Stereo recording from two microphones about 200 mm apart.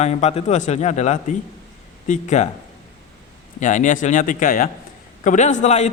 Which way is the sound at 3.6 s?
40° left (ahead or behind).